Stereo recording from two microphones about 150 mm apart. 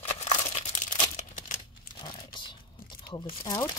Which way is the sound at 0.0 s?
45° left (ahead or behind).